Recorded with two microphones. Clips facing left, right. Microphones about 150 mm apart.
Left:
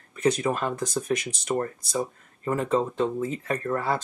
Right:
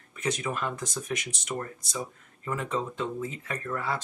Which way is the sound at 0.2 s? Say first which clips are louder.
Left 7 dB; 35° left (ahead or behind).